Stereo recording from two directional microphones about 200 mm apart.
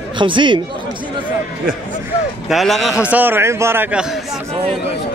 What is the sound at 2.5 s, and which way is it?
A man's voice, centre (ahead or behind).